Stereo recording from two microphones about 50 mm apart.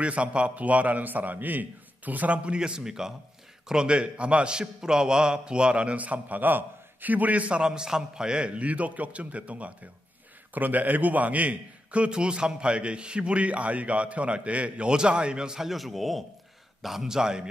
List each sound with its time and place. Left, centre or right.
0.0 s a man's voice: right
15.7 s a man's voice: centre